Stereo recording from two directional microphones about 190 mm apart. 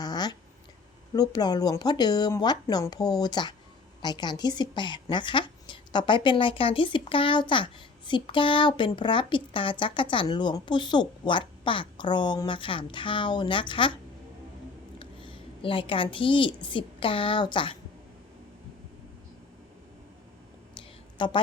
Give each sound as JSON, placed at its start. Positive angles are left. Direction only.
{"t": 0.0, "sound": "a sound", "side_deg": 20}
{"t": 1.1, "sound": "a woman's voice", "side_deg": 20}
{"t": 14.9, "sound": "a woman's voice", "side_deg": 25}
{"t": 21.2, "sound": "a woman's voice", "side_deg": 25}